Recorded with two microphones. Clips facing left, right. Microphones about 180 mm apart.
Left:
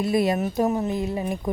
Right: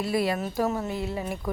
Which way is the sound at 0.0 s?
20° left (ahead or behind).